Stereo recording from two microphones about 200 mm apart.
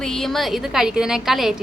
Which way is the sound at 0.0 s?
Centre (ahead or behind).